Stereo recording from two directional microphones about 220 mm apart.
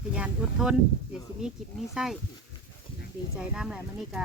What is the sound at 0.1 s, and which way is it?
Speech, 5° right (ahead or behind).